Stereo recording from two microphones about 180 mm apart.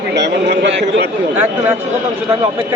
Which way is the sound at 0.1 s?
70° right (ahead or behind).